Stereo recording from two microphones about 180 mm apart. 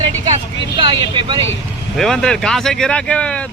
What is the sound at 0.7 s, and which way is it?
Speech, 25° right (ahead or behind).